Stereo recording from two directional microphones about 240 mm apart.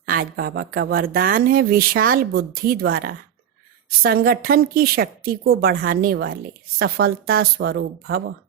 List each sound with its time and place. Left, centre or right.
0.0 s a woman's voice: right